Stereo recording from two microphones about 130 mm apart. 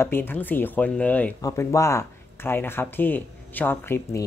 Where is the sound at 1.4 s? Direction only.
25° left (ahead or behind).